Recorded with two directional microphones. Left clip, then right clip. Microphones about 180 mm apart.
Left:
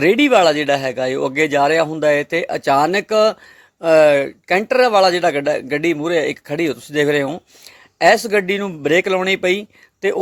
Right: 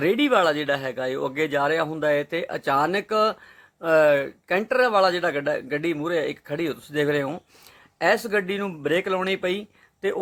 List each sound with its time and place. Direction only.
0.0 s speech: 35° left (ahead or behind)